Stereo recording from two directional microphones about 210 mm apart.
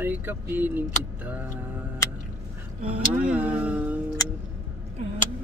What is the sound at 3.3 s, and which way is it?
Speech, 5° right (ahead or behind).